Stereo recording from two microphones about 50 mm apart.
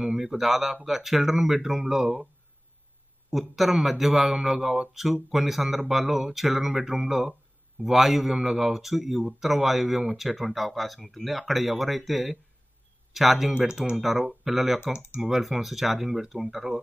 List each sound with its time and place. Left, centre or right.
0.2 s speech: centre
3.3 s speech: centre
13.6 s speech: centre
14.0 s speech: centre